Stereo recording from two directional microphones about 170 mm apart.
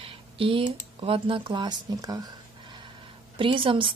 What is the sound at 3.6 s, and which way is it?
Speech, 30° right (ahead or behind).